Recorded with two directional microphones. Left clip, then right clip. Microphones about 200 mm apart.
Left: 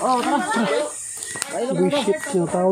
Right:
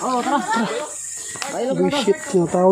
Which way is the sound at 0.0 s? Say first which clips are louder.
Left 1 dB; 15° right (ahead or behind).